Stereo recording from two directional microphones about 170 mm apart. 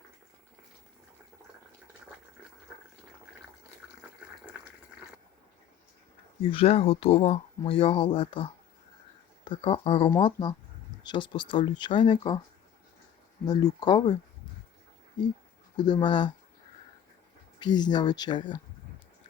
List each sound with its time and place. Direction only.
6.4 s speech: 35° left (ahead or behind)
13.4 s speech: 25° left (ahead or behind)
15.8 s speech: 25° left (ahead or behind)
17.6 s speech: 25° left (ahead or behind)